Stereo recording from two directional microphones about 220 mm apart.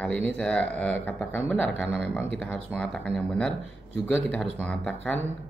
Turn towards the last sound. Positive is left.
turn(degrees=5)  # may be behind; listen again after turning